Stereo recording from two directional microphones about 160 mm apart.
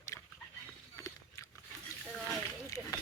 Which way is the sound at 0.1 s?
15° left (ahead or behind).